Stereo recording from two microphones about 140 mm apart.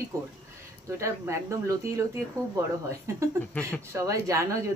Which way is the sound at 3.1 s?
20° right (ahead or behind).